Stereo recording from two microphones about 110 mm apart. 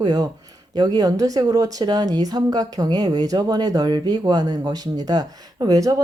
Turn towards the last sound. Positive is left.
turn(degrees=-35)  # may be behind; listen again after turning